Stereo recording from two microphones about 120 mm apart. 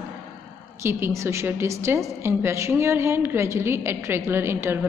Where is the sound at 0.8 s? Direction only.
20° right (ahead or behind).